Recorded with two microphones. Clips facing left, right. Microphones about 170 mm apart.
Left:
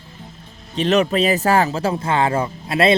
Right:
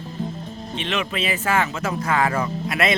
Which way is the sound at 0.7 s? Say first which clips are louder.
Left 10 dB; 40° left (ahead or behind).